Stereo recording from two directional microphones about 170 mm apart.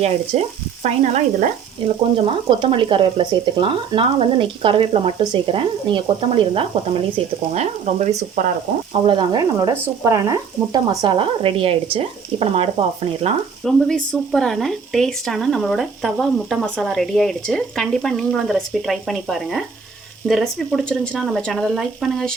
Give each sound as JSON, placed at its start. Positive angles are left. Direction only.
{"t": 0.0, "sound": "frying", "side_deg": -40}
{"t": 2.1, "sound": "speech", "side_deg": -30}
{"t": 8.9, "sound": "speech", "side_deg": -30}
{"t": 13.7, "sound": "speech", "side_deg": 5}